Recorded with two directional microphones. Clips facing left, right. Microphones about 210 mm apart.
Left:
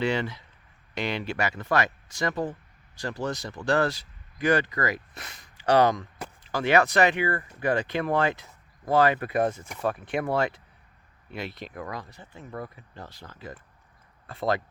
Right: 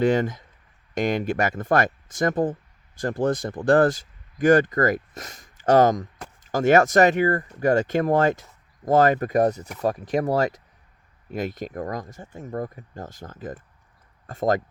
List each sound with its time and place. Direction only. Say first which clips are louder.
0.0 s speech: right 6 dB; 50° right (ahead or behind)